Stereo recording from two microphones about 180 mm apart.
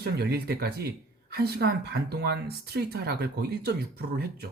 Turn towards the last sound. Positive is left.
turn(degrees=-60)  # may be behind; listen again after turning